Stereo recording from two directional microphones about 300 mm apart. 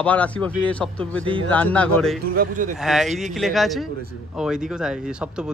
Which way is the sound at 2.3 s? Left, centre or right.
Right.